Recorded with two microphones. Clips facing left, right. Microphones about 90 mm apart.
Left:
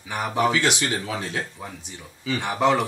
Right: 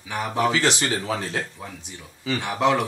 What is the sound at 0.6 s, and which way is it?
Speech, 35° right (ahead or behind).